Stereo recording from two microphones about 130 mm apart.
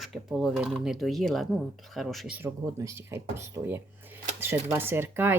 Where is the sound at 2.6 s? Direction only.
25° right (ahead or behind).